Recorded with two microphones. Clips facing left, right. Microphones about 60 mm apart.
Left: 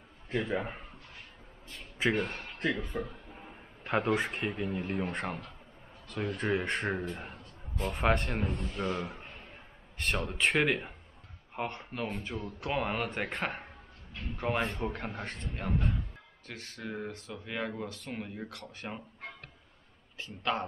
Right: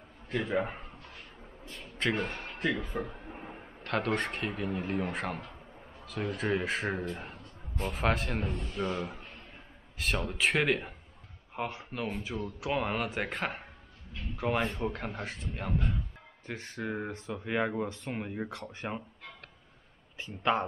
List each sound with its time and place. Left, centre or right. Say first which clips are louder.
0.4 s a man's voice: right 2 dB; centre
1.8 s a sound: left 1 dB; centre
2.6 s speech: even; centre
3.0 s a sound: right 2 dB; right
3.8 s speech: left 2 dB; centre
16.4 s speech: right 5 dB; centre
20.2 s speech: right 1 dB; right